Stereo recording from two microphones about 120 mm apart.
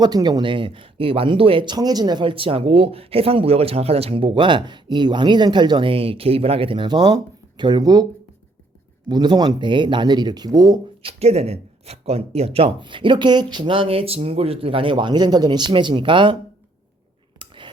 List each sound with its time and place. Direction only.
0.0 s speech: 35° right (ahead or behind)
9.0 s speech: 35° right (ahead or behind)
11.0 s speech: 60° right (ahead or behind); by 16.4 s 45° right (ahead or behind)
17.4 s a sound: 45° right (ahead or behind)